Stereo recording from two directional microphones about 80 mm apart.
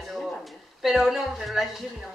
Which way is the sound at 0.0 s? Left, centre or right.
Centre.